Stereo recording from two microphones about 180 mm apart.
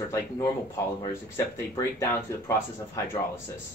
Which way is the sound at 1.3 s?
15° left (ahead or behind).